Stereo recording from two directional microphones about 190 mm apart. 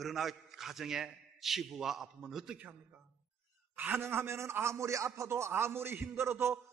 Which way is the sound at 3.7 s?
10° right (ahead or behind).